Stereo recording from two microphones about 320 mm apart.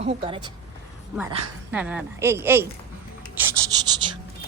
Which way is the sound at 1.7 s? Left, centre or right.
Centre.